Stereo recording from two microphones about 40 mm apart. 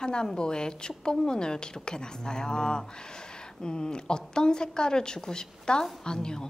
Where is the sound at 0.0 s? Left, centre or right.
Centre.